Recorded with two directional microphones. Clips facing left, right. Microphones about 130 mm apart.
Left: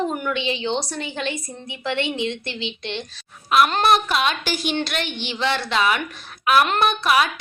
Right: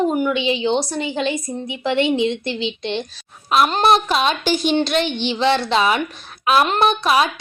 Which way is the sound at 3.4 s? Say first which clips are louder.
Right 2 dB; 30° right (ahead or behind).